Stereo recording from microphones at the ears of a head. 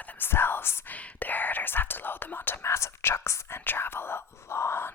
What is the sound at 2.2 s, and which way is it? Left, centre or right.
Whispering, left.